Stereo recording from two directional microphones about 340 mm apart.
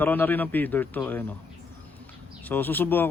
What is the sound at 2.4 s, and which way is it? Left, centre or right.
Speech, centre.